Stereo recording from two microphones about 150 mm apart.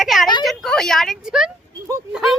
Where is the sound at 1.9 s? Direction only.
20° right (ahead or behind).